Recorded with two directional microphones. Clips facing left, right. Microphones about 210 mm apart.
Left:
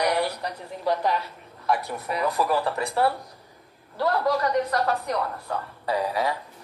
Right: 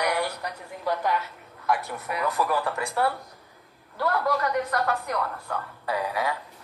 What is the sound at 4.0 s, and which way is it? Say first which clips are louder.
A man's voice: left 2 dB; 35° left (ahead or behind).